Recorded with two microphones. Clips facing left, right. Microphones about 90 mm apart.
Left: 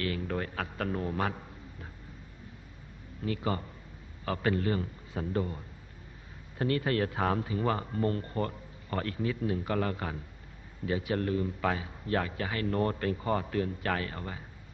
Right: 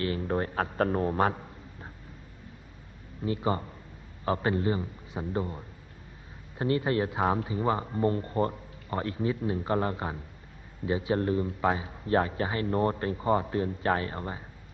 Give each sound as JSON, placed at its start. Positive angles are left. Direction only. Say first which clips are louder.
{"t": 0.0, "sound": "a man's voice", "louder": "right 4 dB", "side_deg": -30}
{"t": 3.3, "sound": "a man's voice", "louder": "right 3 dB", "side_deg": -25}
{"t": 6.6, "sound": "speech", "louder": "right 2 dB", "side_deg": -25}